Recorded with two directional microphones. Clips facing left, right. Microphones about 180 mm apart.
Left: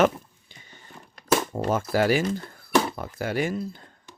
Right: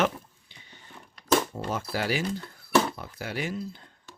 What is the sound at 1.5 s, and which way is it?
Speech, 50° left (ahead or behind).